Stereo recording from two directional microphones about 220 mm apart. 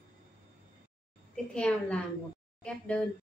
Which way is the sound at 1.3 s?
5° left (ahead or behind).